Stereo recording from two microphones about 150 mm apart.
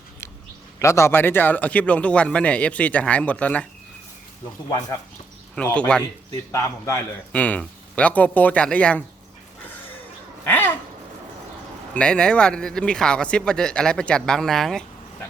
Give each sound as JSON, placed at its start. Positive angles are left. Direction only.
{"t": 0.8, "sound": "speech", "side_deg": 20}
{"t": 5.7, "sound": "speech", "side_deg": 10}
{"t": 6.5, "sound": "a man's voice", "side_deg": 20}
{"t": 7.3, "sound": "speech", "side_deg": 10}
{"t": 10.4, "sound": "babbling", "side_deg": 15}
{"t": 11.9, "sound": "speech", "side_deg": 5}